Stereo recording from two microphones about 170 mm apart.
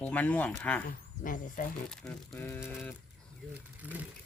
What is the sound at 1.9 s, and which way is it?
Speech, 5° left (ahead or behind).